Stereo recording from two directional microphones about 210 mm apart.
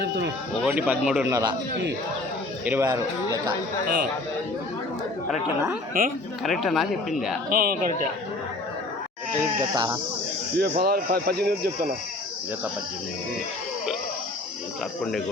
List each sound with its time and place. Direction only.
0.6 s speech: 5° right (ahead or behind)
2.6 s speech: 15° right (ahead or behind)
5.3 s speech: 10° right (ahead or behind)
6.0 s speech: 45° right (ahead or behind)
6.4 s speech: centre (ahead or behind)
7.5 s a man's voice: 40° right (ahead or behind)
9.4 s speech: 20° right (ahead or behind)
10.6 s speech: 50° right (ahead or behind)